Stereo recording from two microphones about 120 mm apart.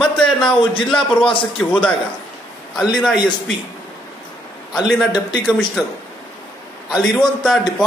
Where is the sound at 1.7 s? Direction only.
10° left (ahead or behind).